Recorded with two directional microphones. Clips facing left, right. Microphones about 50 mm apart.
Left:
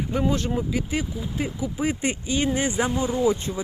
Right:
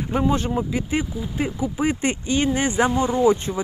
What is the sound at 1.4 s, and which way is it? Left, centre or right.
Speech, right.